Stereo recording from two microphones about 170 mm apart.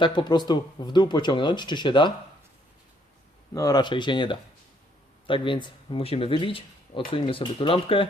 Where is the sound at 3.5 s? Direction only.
20° left (ahead or behind).